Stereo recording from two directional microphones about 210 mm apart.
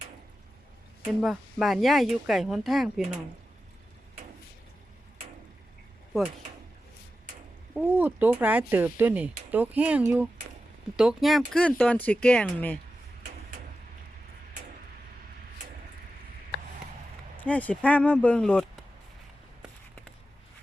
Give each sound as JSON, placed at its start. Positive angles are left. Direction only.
{"t": 1.0, "sound": "speech", "side_deg": -5}
{"t": 7.7, "sound": "speech", "side_deg": -10}
{"t": 17.4, "sound": "speech", "side_deg": 5}